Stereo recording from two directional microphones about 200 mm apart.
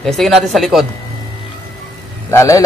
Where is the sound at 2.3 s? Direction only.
15° left (ahead or behind).